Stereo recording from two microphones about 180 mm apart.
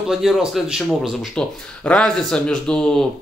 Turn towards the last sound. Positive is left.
turn(degrees=5)  # may be behind; listen again after turning